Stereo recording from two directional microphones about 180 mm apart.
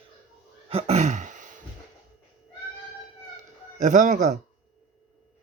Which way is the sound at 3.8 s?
45° right (ahead or behind).